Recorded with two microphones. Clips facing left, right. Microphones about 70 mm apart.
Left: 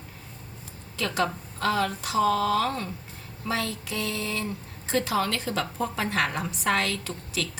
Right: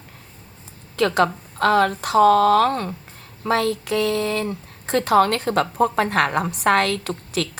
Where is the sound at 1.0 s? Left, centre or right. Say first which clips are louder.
Right 9 dB; right.